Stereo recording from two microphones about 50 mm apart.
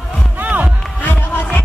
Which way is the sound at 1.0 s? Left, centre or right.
Left.